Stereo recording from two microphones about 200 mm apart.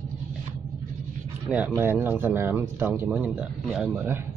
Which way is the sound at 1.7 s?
10° right (ahead or behind).